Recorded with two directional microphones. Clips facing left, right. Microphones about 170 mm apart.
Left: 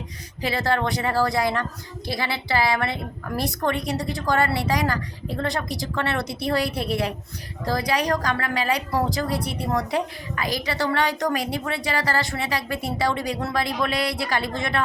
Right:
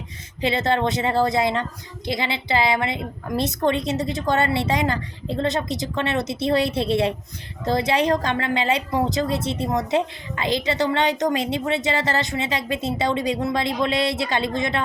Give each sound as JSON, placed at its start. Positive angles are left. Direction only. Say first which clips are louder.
{"t": 0.4, "sound": "a woman's voice", "louder": "right 3 dB", "side_deg": -20}